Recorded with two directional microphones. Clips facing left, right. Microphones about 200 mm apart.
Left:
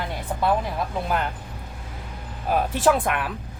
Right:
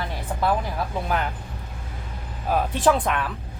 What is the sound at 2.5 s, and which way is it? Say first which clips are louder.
Speech: even; 5° left (ahead or behind).